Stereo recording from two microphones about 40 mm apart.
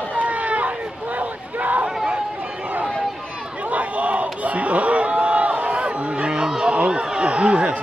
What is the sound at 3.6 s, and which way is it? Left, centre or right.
Crowd, right.